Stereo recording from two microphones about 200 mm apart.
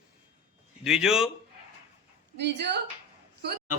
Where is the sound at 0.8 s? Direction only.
5° right (ahead or behind).